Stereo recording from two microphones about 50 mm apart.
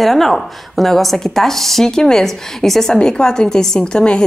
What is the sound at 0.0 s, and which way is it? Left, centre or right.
A woman's voice, centre.